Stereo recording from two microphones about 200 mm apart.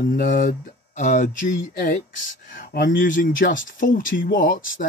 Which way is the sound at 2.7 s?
45° left (ahead or behind).